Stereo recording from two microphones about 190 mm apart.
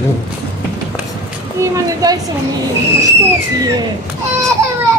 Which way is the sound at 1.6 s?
20° right (ahead or behind).